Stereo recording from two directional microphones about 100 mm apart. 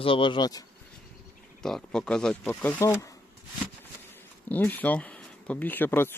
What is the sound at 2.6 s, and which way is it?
Speech, 15° left (ahead or behind).